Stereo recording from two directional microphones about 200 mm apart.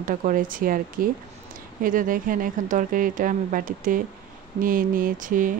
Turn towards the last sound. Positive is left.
turn(degrees=-40)  # may be behind; listen again after turning